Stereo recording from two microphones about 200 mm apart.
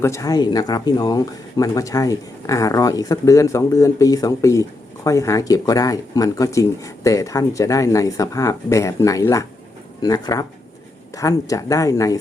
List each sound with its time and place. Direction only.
0.0 s speech: 15° left (ahead or behind)